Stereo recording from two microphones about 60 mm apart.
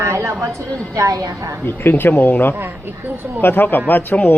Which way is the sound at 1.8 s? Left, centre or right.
Left.